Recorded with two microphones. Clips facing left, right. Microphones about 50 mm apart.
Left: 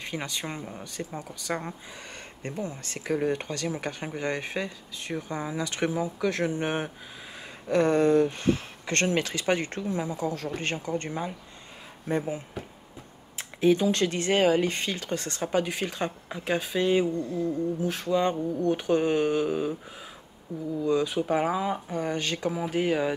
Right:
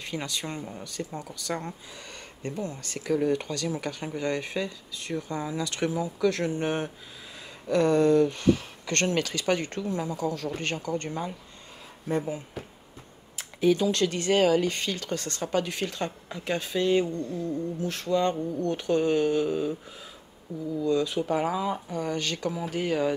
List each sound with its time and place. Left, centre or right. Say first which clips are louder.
0.0 s speech: even; left
20.8 s speech: even; centre